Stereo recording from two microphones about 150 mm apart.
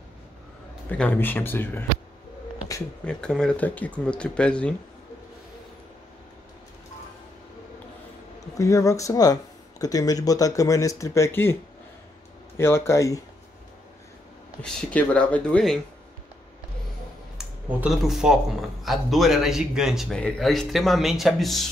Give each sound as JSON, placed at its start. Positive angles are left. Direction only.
{"t": 0.8, "sound": "speech", "side_deg": 10}
{"t": 3.1, "sound": "speech", "side_deg": 5}
{"t": 8.4, "sound": "speech", "side_deg": 20}
{"t": 12.5, "sound": "speech", "side_deg": 15}
{"t": 14.6, "sound": "speech", "side_deg": 10}
{"t": 17.4, "sound": "speech", "side_deg": -5}